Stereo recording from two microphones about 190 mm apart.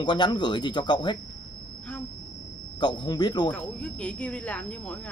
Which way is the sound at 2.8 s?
25° left (ahead or behind).